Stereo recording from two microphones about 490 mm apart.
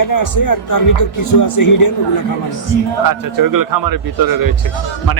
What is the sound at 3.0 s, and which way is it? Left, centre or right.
A man's voice, right.